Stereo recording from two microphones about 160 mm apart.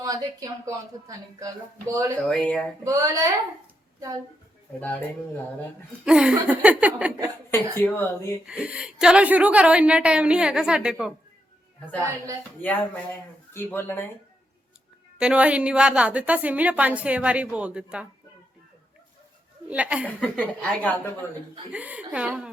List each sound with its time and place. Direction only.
0.0 s speech: 20° right (ahead or behind)
2.1 s speech: 5° left (ahead or behind)
2.8 s speech: 20° right (ahead or behind)
4.8 s speech: 10° left (ahead or behind)
6.1 s a woman's voice: 5° right (ahead or behind)
7.8 s speech: 15° left (ahead or behind)
8.4 s a woman's voice: 5° right (ahead or behind)
12.0 s speech: 20° right (ahead or behind)
12.4 s speech: 10° left (ahead or behind)
15.2 s a woman's voice: 5° right (ahead or behind)
19.7 s a woman's voice: 10° right (ahead or behind)
20.1 s speech: 10° left (ahead or behind)
21.7 s a woman's voice: 10° right (ahead or behind)